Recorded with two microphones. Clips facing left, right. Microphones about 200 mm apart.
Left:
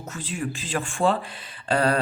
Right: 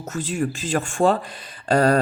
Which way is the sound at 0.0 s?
45° right (ahead or behind).